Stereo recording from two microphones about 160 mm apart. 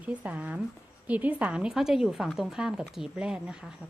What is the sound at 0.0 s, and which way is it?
A woman's voice, 10° right (ahead or behind).